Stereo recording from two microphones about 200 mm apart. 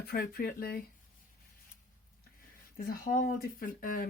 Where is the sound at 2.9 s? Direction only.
45° left (ahead or behind).